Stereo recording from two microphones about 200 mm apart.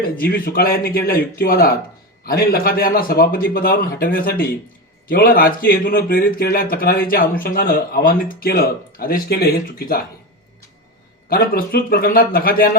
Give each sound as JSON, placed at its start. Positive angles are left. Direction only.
{"t": 0.0, "sound": "speech", "side_deg": 45}
{"t": 11.3, "sound": "speech", "side_deg": 50}